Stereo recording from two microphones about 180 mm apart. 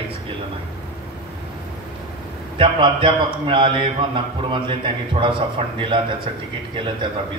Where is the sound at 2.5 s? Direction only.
30° right (ahead or behind).